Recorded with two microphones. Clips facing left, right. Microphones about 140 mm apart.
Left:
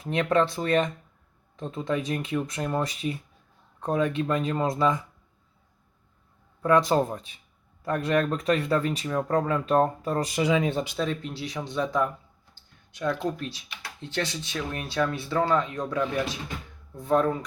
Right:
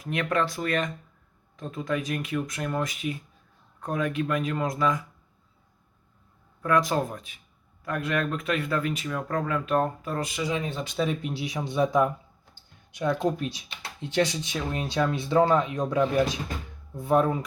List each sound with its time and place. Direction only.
0.0 s speech: 30° left (ahead or behind)
6.6 s speech: 30° left (ahead or behind)
10.4 s speech: 70° left (ahead or behind)
10.9 s speech: 10° right (ahead or behind)